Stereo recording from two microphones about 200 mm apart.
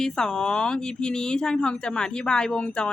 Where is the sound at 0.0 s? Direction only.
5° left (ahead or behind).